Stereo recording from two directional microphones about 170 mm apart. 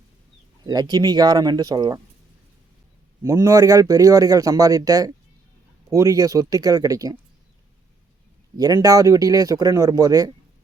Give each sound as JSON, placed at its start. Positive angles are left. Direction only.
{"t": 0.6, "sound": "speech", "side_deg": -25}
{"t": 3.2, "sound": "speech", "side_deg": -20}
{"t": 8.5, "sound": "speech", "side_deg": -20}